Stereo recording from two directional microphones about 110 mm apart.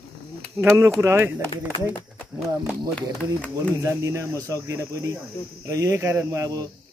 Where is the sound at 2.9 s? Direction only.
15° left (ahead or behind).